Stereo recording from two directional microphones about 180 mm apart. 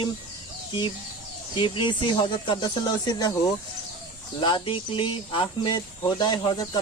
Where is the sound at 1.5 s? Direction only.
30° left (ahead or behind).